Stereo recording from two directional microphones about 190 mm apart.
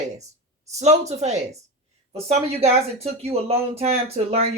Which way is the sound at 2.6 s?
35° right (ahead or behind).